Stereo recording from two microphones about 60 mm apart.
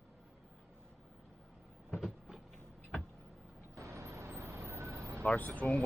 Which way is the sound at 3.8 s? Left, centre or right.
Right.